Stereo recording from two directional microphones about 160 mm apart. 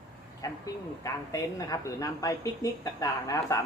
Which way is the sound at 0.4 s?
20° left (ahead or behind).